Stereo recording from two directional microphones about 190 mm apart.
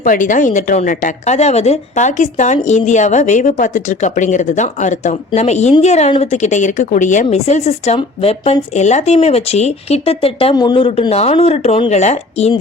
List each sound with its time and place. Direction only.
0.0 s a woman's voice: 45° left (ahead or behind)